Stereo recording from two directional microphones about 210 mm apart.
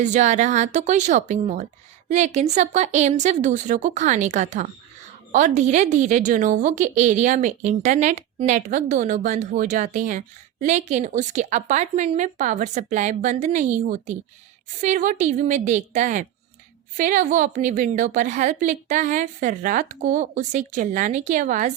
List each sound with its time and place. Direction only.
0.0 s a woman's voice: 35° right (ahead or behind)